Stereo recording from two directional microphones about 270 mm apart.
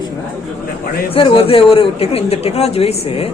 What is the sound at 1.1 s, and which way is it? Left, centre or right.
A man's voice, centre.